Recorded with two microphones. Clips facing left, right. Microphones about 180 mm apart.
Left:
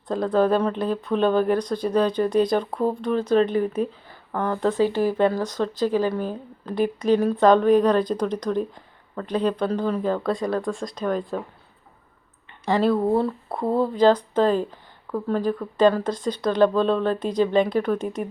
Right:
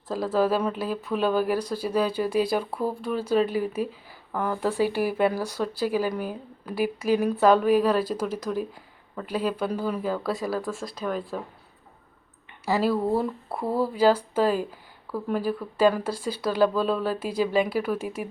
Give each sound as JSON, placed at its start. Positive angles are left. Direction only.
{"t": 0.1, "sound": "speech", "side_deg": -5}
{"t": 12.6, "sound": "speech", "side_deg": -5}
{"t": 13.7, "sound": "speech", "side_deg": 20}
{"t": 13.9, "sound": "speech", "side_deg": -10}